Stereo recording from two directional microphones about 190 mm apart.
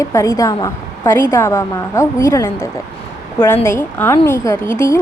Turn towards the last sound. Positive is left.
turn(degrees=15)  # may be behind; listen again after turning